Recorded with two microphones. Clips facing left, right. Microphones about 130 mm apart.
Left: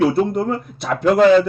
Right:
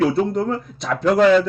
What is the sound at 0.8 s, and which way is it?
Speech, 10° left (ahead or behind).